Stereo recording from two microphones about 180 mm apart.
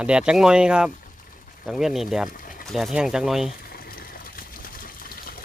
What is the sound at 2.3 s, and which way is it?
Speech, 50° left (ahead or behind).